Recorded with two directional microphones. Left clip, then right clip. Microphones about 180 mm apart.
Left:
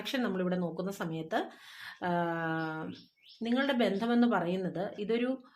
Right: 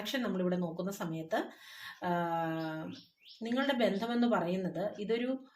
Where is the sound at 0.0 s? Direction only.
25° left (ahead or behind).